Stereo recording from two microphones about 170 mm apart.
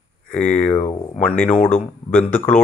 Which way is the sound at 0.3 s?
10° left (ahead or behind).